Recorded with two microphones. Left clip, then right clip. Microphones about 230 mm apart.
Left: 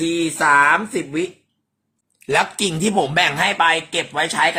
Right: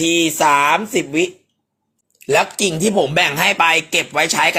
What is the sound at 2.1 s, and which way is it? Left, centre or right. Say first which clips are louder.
Speech: right 2 dB; centre.